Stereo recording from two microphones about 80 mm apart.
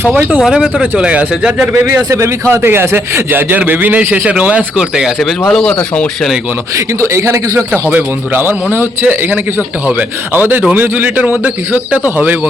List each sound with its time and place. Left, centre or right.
0.1 s a man's voice: centre
0.4 s speech: centre
0.8 s a man's voice: centre
1.6 s a man's voice: right; by 5.1 s centre
5.5 s speech: centre
6.7 s a man's voice: right
7.7 s a man's voice: right